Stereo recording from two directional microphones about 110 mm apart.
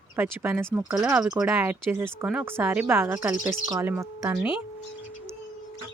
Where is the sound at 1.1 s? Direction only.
5° right (ahead or behind); by 4.4 s 25° right (ahead or behind).